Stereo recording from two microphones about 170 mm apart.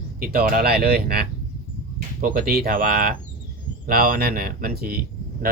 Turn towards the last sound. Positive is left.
turn(degrees=-60)  # may be behind; listen again after turning